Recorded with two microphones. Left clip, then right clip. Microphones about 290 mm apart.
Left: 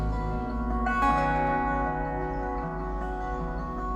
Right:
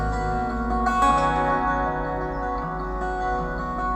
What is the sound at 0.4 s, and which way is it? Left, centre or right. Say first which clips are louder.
Music: right 6 dB; right.